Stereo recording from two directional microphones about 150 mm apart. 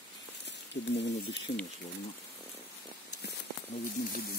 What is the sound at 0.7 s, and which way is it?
Speech, 50° left (ahead or behind).